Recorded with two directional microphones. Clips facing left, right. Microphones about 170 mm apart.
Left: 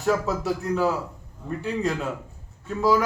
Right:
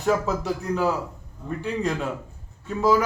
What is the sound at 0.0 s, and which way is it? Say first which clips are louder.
Speech: even; centre (ahead or behind).